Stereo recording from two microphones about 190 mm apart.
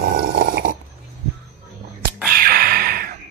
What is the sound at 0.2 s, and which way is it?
Snoring, 55° right (ahead or behind).